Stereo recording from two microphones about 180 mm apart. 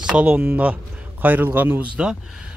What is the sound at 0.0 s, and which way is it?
Speech, 5° right (ahead or behind).